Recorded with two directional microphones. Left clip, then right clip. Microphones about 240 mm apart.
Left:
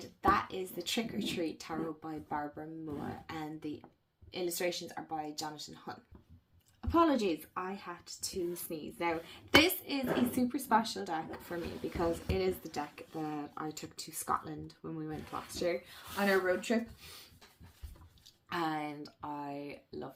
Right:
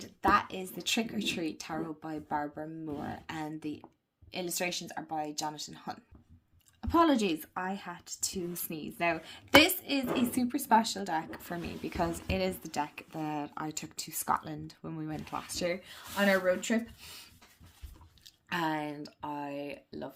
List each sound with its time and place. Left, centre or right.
0.0 s speech: right
18.4 s speech: right